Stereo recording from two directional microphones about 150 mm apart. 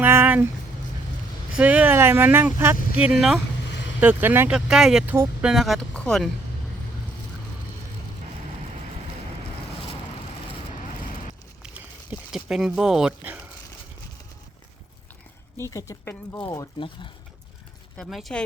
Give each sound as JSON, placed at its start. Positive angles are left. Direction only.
{"t": 0.0, "sound": "a sound", "side_deg": -15}
{"t": 1.5, "sound": "speech", "side_deg": -10}
{"t": 5.1, "sound": "speech", "side_deg": -15}
{"t": 5.5, "sound": "speech", "side_deg": 0}
{"t": 12.3, "sound": "speech", "side_deg": -5}
{"t": 15.5, "sound": "speech", "side_deg": 20}
{"t": 17.9, "sound": "speech", "side_deg": 0}